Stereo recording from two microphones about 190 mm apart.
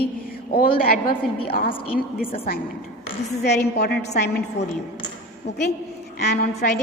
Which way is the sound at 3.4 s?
60° left (ahead or behind).